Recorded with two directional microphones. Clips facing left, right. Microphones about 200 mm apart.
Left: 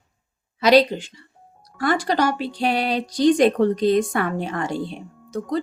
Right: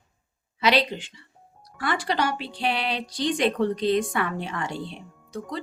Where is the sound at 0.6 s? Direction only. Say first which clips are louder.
Left 7 dB; 40° left (ahead or behind).